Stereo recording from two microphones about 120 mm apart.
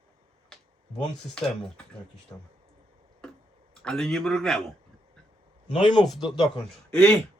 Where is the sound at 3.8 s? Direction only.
5° left (ahead or behind).